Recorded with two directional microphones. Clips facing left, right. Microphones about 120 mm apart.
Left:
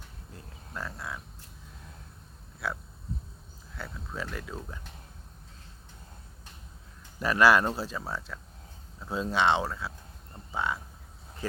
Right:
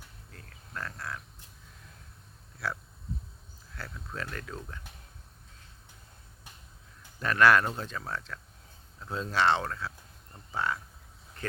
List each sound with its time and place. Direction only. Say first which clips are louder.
0.3 s a sound: left 5 dB; 20° left (ahead or behind)
0.8 s speech: left 1 dB; 5° left (ahead or behind)
3.8 s speech: left 2 dB; 5° left (ahead or behind)
7.2 s speech: left 1 dB; 10° left (ahead or behind)